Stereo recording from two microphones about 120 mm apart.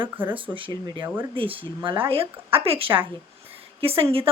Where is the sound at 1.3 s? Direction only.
45° right (ahead or behind).